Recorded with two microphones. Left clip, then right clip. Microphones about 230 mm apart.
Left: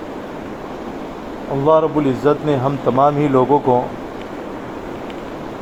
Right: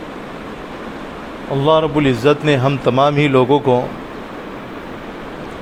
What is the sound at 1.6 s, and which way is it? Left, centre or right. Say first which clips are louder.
Speech: even; right.